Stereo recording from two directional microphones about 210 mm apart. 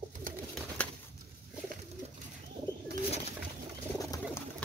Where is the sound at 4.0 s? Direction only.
15° left (ahead or behind).